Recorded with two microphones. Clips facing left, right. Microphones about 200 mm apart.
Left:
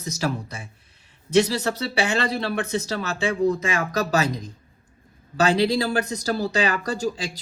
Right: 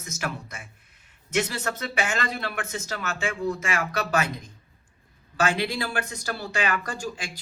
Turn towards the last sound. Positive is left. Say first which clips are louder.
# left 7 dB
turn(degrees=40)  # may be behind; listen again after turning